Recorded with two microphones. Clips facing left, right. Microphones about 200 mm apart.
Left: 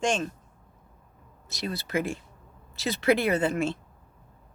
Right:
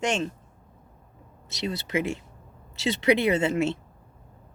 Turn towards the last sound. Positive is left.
turn(degrees=-25)  # may be behind; listen again after turning